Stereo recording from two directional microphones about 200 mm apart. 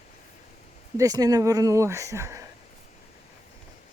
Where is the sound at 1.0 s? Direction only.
20° right (ahead or behind).